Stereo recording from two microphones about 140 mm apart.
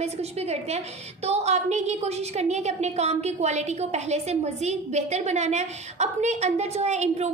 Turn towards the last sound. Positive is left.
turn(degrees=-50)  # may be behind; listen again after turning